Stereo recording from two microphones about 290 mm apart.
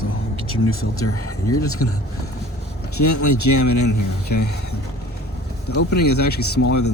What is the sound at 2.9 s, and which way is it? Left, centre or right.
Speech, left.